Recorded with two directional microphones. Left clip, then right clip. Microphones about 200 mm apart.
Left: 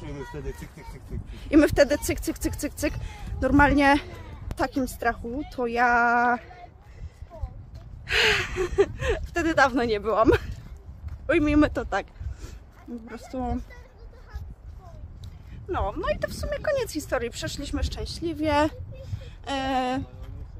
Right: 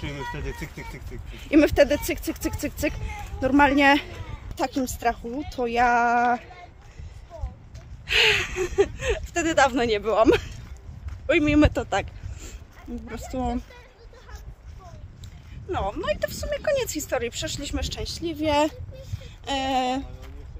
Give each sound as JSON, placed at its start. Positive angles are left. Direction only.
{"t": 1.3, "sound": "speech", "side_deg": 5}
{"t": 8.1, "sound": "a man's voice", "side_deg": 5}
{"t": 15.7, "sound": "speech", "side_deg": 0}